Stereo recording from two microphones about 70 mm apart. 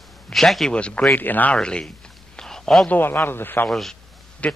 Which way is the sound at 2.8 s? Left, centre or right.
Left.